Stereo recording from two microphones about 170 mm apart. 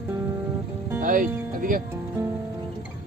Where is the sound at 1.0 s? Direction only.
50° right (ahead or behind).